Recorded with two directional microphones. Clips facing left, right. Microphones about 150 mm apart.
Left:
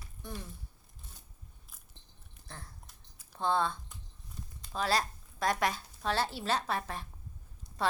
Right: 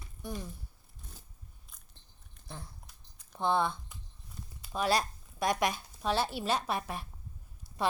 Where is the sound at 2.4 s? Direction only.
10° right (ahead or behind).